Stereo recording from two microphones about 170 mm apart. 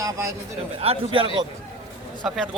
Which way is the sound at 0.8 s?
35° right (ahead or behind).